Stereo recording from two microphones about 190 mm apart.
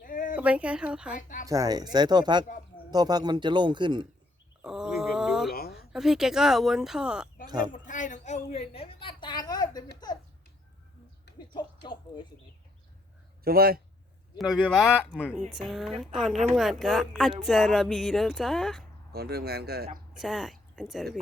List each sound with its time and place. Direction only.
0.0 s a sound: 45° left (ahead or behind)
0.3 s speech: 5° right (ahead or behind)
1.5 s speech: 20° right (ahead or behind)
4.6 s wild animals: 5° right (ahead or behind)
5.5 s a sound: 55° left (ahead or behind)
5.9 s speech: centre (ahead or behind)
7.4 s speech: 20° right (ahead or behind)
7.7 s a woman's voice: 40° left (ahead or behind); by 9.8 s 20° left (ahead or behind)
11.3 s a sound: 25° left (ahead or behind)
13.4 s speech: 50° right (ahead or behind)
14.3 s speech: centre (ahead or behind)
19.1 s speech: 55° right (ahead or behind)
20.2 s a woman's voice: centre (ahead or behind)